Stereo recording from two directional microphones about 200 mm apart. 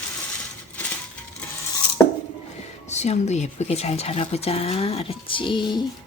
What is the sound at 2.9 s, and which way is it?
Speech, 35° left (ahead or behind).